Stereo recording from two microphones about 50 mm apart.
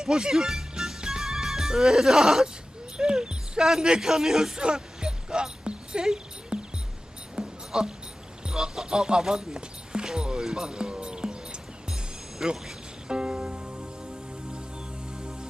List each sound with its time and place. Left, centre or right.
0.0 s music: centre
3.0 s speech: centre
4.6 s a sound: centre
7.3 s music: centre
8.4 s speech: centre
12.4 s music: centre